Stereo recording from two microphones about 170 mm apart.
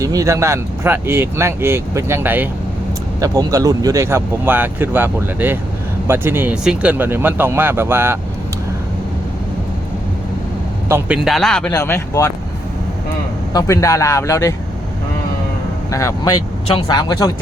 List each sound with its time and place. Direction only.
0.0 s speech: 20° right (ahead or behind)
10.8 s a man's voice: 15° right (ahead or behind)
11.3 s speech: 5° left (ahead or behind)
11.7 s speech: 15° left (ahead or behind)
13.5 s speech: 20° left (ahead or behind)
15.9 s a woman's voice: 20° left (ahead or behind)